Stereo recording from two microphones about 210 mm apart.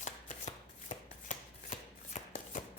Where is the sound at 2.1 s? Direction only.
35° left (ahead or behind).